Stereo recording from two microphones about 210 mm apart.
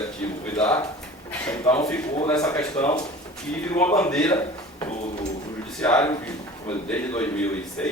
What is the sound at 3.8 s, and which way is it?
Speech, 10° left (ahead or behind).